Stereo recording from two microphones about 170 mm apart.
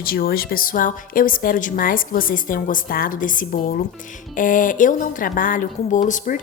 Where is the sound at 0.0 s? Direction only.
60° left (ahead or behind).